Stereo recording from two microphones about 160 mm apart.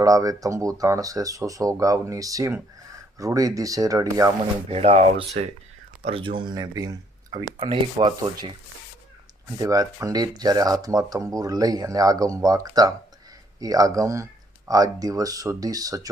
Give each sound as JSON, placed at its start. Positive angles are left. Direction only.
{"t": 0.0, "sound": "speech", "side_deg": -20}
{"t": 4.7, "sound": "rub", "side_deg": -40}
{"t": 6.1, "sound": "speech", "side_deg": -35}
{"t": 7.6, "sound": "rub", "side_deg": -35}
{"t": 9.5, "sound": "speech", "side_deg": -20}